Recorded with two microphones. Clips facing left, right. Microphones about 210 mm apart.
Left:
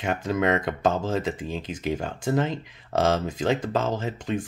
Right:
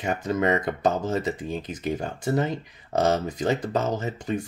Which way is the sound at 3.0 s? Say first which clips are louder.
Even; 90° left.